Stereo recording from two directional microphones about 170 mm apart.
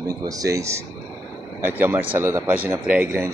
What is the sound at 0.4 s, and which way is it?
Speech, 20° right (ahead or behind).